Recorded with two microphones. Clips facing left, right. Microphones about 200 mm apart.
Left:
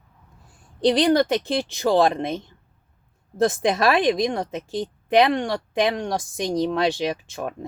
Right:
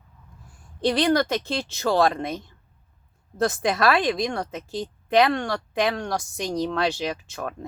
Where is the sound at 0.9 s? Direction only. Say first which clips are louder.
Left 3 dB; 20° left (ahead or behind).